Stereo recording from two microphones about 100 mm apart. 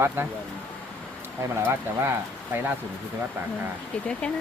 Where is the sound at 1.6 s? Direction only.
25° right (ahead or behind).